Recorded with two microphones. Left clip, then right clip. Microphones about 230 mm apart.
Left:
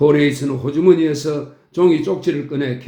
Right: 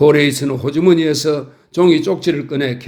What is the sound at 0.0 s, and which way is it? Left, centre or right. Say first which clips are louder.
A man's voice: right 3 dB; right.